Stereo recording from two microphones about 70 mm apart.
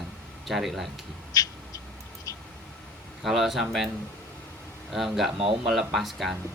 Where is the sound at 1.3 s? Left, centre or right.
Left.